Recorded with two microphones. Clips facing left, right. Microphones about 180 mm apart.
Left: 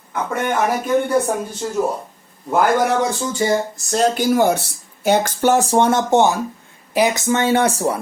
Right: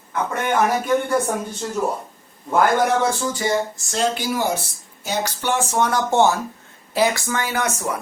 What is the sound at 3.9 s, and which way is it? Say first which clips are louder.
Speech: left 6 dB; 45° left (ahead or behind).